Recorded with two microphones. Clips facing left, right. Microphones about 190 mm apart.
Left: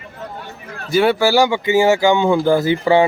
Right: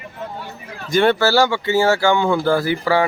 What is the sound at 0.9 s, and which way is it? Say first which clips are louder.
Speech: left 1 dB; 5° left (ahead or behind).